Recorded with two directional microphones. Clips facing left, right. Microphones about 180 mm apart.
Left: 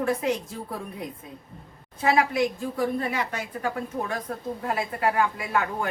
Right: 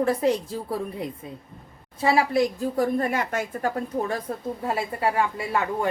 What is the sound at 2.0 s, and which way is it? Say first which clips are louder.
A woman's voice: right 2 dB; 35° right (ahead or behind).